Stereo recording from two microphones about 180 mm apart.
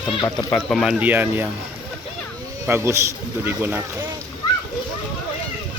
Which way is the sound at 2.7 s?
15° right (ahead or behind).